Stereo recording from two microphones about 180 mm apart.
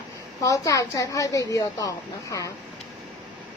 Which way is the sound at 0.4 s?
20° left (ahead or behind).